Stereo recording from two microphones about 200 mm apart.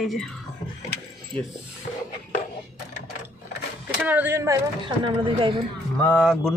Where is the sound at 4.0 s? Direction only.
5° right (ahead or behind).